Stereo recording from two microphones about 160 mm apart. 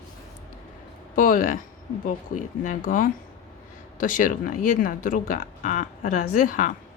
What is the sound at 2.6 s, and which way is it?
Speech, 55° left (ahead or behind).